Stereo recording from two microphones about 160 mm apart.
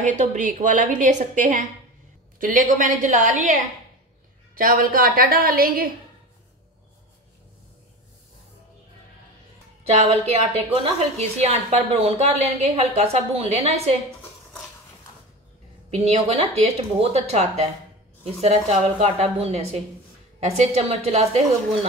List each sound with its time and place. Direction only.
0.0 s a woman's voice: 50° right (ahead or behind)
4.6 s a woman's voice: 60° right (ahead or behind)
9.8 s a woman's voice: 40° right (ahead or behind)
15.9 s a woman's voice: 40° right (ahead or behind)